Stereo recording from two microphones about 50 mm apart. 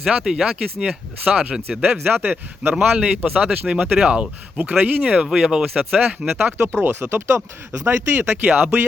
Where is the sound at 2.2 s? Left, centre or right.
Right.